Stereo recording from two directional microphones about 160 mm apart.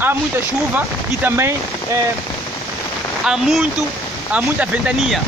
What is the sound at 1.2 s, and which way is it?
Speech, 15° right (ahead or behind).